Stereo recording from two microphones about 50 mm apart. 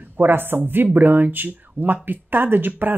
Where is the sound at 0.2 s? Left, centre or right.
Right.